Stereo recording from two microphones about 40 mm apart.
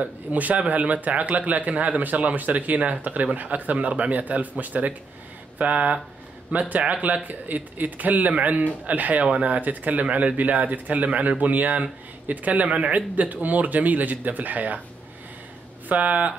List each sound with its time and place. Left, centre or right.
0.0 s speech: right
7.2 s a man's voice: right
15.9 s speech: right